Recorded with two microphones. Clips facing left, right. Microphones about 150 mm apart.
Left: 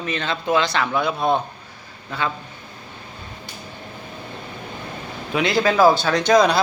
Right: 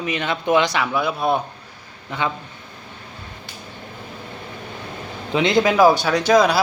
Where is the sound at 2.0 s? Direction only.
20° right (ahead or behind).